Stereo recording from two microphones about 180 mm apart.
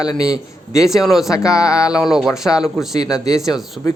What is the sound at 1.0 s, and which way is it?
Speech, centre (ahead or behind).